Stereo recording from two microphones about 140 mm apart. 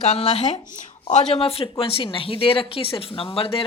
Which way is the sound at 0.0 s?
50° left (ahead or behind).